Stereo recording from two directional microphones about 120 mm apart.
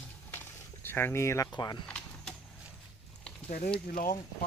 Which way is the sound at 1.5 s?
35° left (ahead or behind).